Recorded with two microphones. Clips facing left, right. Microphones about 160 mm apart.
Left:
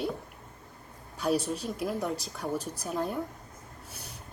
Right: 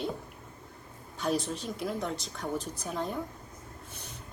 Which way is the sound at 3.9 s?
10° left (ahead or behind).